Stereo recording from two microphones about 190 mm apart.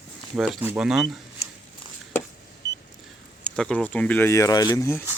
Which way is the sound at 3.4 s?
5° left (ahead or behind).